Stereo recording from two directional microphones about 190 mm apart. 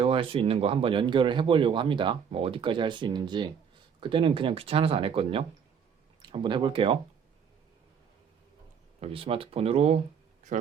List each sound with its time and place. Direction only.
0.0 s speech: 30° right (ahead or behind)
9.0 s speech: 30° right (ahead or behind)